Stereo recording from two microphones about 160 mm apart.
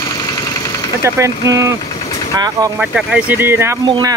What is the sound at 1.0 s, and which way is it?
Speech, 20° right (ahead or behind).